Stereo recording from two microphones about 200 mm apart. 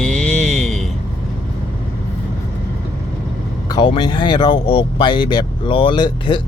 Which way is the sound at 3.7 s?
25° left (ahead or behind).